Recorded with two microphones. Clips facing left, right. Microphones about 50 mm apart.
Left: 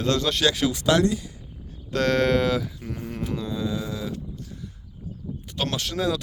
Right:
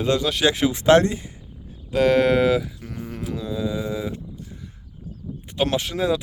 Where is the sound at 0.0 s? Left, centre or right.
Centre; by 1.2 s right.